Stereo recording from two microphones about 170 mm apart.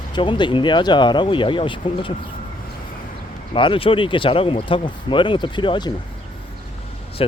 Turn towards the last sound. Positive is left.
turn(degrees=25)  # may be behind; listen again after turning